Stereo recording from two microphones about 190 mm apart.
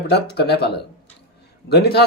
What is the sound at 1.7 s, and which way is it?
Speech, 60° left (ahead or behind).